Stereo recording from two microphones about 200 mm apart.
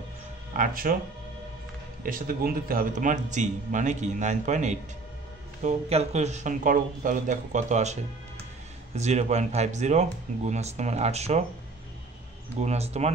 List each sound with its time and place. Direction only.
0.5 s speech: 45° right (ahead or behind)
2.0 s a man's voice: 45° right (ahead or behind)
12.5 s a man's voice: 35° right (ahead or behind)